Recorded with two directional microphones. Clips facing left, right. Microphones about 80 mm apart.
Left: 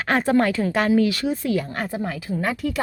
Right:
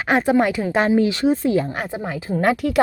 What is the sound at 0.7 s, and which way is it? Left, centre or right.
Speech, right.